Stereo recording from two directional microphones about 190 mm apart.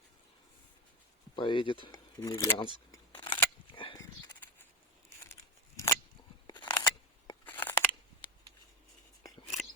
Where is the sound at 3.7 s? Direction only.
25° left (ahead or behind).